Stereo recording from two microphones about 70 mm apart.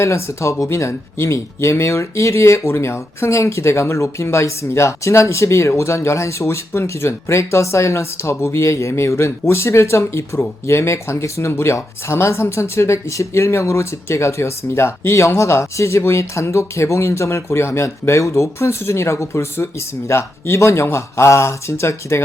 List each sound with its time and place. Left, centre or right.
0.0 s speech: left